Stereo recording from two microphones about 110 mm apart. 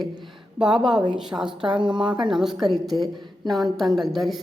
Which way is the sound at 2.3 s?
5° right (ahead or behind).